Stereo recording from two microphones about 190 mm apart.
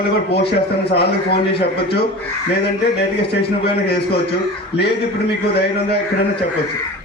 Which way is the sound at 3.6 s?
55° left (ahead or behind).